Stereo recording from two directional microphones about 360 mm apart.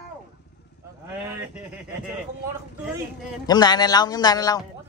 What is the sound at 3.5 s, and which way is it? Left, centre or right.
Speech, centre.